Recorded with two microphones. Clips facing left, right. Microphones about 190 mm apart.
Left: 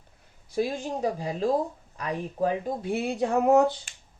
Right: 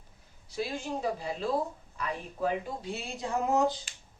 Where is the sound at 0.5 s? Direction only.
50° left (ahead or behind).